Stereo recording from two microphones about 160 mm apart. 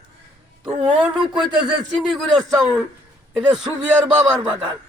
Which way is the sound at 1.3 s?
25° right (ahead or behind).